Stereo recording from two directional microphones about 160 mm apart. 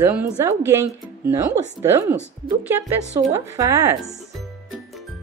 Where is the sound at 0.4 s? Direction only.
15° right (ahead or behind).